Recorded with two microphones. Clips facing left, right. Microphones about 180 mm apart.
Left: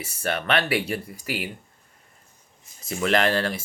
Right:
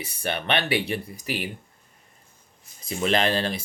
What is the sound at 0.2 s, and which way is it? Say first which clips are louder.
Speech: left 2 dB; 20° right (ahead or behind).